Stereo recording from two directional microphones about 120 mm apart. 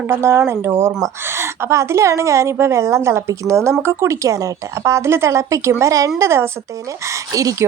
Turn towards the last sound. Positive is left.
turn(degrees=-30)  # may be behind; listen again after turning